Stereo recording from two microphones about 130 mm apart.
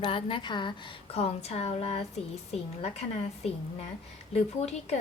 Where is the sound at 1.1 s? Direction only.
50° left (ahead or behind).